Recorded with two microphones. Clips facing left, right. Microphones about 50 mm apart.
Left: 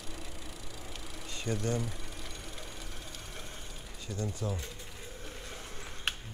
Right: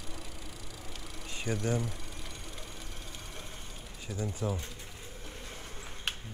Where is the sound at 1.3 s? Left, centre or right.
Centre.